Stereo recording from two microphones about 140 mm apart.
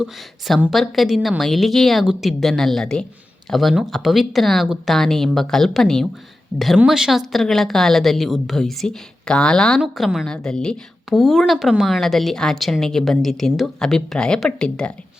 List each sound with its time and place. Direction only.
0.0 s a woman's voice: centre (ahead or behind)